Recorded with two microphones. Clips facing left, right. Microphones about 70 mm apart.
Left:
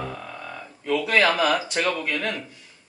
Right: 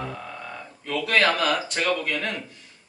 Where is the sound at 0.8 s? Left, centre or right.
Centre.